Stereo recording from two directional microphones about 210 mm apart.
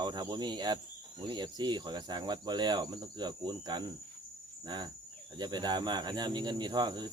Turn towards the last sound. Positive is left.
turn(degrees=-20)  # may be behind; listen again after turning